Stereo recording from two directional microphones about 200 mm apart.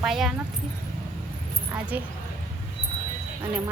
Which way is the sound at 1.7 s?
10° right (ahead or behind).